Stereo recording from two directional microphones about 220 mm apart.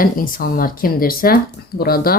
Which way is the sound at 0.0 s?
40° left (ahead or behind).